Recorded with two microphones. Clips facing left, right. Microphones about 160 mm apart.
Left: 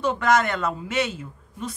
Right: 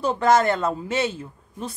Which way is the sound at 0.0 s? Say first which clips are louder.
Right 2 dB; 30° right (ahead or behind).